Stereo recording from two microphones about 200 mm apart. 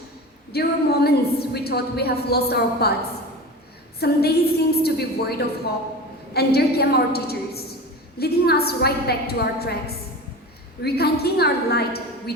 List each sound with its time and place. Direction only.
0.5 s a woman's voice: 55° left (ahead or behind)
4.0 s a woman's voice: 50° left (ahead or behind)